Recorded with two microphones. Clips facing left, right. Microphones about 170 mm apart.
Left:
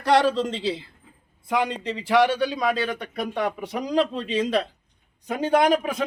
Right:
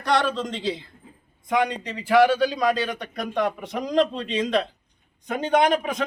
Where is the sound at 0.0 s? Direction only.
30° left (ahead or behind).